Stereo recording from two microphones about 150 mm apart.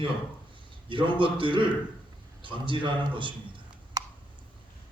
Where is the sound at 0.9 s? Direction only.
35° right (ahead or behind).